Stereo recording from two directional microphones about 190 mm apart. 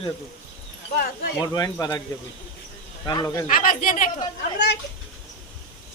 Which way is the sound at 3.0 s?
20° left (ahead or behind).